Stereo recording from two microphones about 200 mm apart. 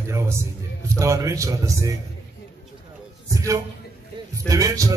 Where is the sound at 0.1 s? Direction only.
15° right (ahead or behind).